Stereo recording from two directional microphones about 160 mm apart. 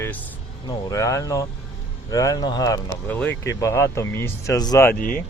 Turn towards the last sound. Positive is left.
turn(degrees=10)  # may be behind; listen again after turning